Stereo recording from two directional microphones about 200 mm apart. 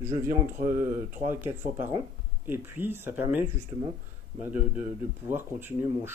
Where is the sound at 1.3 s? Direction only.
10° right (ahead or behind).